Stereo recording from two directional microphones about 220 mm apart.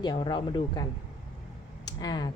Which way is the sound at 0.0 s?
20° left (ahead or behind).